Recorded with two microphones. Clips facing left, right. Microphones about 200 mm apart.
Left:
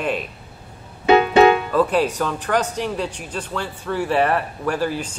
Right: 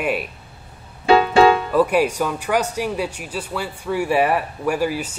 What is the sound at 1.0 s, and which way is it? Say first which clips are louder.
Music: left 1 dB; 20° left (ahead or behind).